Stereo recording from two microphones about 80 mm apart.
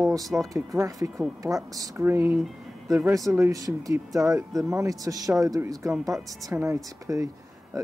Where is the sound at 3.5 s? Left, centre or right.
Right.